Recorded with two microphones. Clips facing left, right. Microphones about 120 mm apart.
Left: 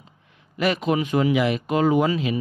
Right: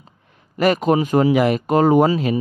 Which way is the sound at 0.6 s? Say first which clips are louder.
Right 5 dB; 45° right (ahead or behind).